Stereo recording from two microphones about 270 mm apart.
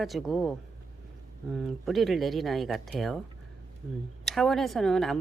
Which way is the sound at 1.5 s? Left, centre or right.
Centre.